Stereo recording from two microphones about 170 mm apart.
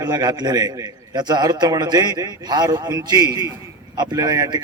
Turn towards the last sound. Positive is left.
turn(degrees=-25)  # may be behind; listen again after turning